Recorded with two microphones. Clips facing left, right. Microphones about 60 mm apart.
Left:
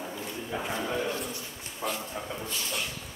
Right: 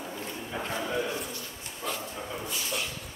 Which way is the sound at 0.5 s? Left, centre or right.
Centre.